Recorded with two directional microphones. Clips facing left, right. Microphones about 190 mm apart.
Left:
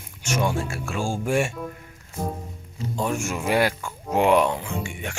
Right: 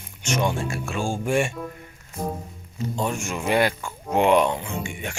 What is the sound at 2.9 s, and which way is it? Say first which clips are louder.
Speech: left 2 dB; 5° left (ahead or behind).